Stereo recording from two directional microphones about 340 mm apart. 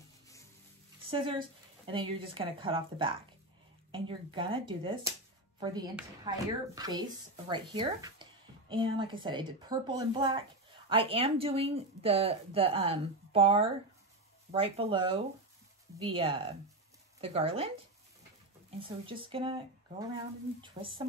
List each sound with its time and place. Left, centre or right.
1.1 s speech: centre
18.8 s speech: centre